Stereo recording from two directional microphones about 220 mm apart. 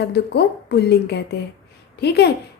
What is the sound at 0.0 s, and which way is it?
A woman's voice, 50° left (ahead or behind).